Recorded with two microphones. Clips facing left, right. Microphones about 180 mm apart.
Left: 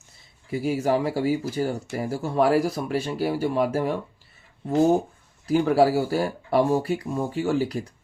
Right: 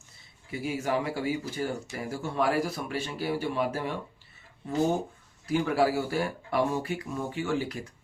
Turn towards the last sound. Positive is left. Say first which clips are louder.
# left 6 dB
turn(degrees=35)  # may be behind; listen again after turning